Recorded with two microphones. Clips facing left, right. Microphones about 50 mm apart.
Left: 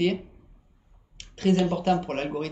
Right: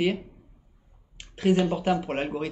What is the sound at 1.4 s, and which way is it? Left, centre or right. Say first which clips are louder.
Speech: even; centre.